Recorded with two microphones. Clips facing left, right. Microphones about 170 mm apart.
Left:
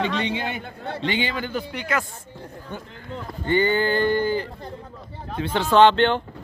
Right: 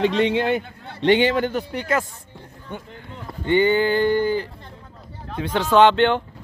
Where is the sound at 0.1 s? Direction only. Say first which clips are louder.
Right 7 dB; 90° right.